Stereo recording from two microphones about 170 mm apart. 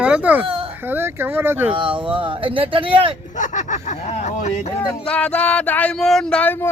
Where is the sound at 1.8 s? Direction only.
30° right (ahead or behind).